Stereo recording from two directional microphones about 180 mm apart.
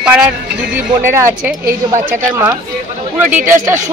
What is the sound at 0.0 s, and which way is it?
A woman's voice, 5° right (ahead or behind).